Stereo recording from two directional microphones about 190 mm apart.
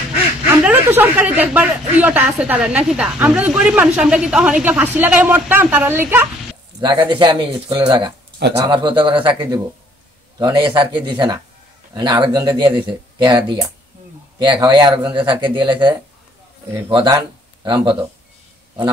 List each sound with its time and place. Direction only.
0.5 s a woman's voice: 10° right (ahead or behind)
6.8 s speech: 25° right (ahead or behind)